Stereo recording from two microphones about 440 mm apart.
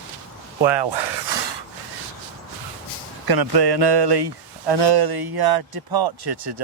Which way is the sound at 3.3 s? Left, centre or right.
Right.